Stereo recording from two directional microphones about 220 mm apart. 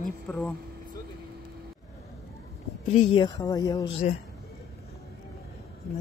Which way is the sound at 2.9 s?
25° left (ahead or behind).